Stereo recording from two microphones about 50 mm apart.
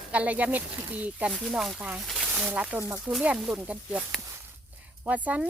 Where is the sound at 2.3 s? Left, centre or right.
Right.